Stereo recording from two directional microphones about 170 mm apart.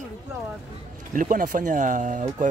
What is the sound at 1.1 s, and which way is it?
Speech, 50° right (ahead or behind).